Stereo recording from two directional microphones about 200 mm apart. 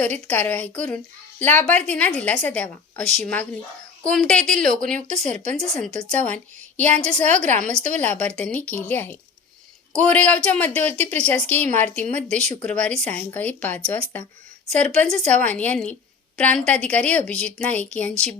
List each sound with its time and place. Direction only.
0.0 s a woman's voice: 5° left (ahead or behind)
5.0 s speech: 35° right (ahead or behind)
5.5 s a woman's voice: 5° left (ahead or behind)
7.2 s speech: 35° right (ahead or behind)
7.6 s a woman's voice: 5° left (ahead or behind)
10.8 s speech: 30° right (ahead or behind)
11.3 s a woman's voice: 10° left (ahead or behind)